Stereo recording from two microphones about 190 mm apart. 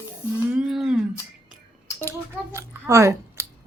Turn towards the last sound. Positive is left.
turn(degrees=-15)  # may be behind; listen again after turning